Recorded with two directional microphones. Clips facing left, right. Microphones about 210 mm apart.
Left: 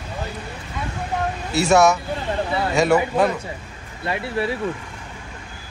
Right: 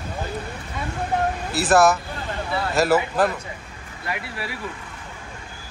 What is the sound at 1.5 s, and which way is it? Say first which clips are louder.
A man's voice: left 2 dB; centre (ahead or behind).